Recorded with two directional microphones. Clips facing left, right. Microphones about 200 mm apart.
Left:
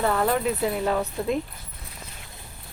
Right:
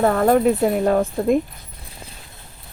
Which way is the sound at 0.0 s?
45° right (ahead or behind).